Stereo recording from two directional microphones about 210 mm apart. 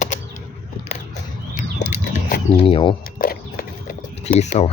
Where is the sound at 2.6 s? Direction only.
25° left (ahead or behind).